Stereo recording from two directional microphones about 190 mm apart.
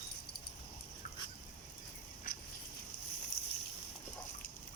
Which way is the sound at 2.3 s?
50° left (ahead or behind).